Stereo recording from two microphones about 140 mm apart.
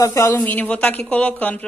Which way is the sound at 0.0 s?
20° left (ahead or behind).